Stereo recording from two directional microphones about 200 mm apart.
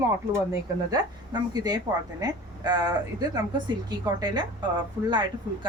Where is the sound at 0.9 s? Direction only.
20° right (ahead or behind).